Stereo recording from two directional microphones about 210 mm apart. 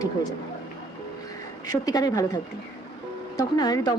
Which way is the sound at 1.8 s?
15° left (ahead or behind).